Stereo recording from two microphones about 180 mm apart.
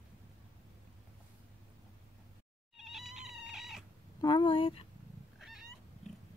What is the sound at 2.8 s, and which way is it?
Cat, centre (ahead or behind).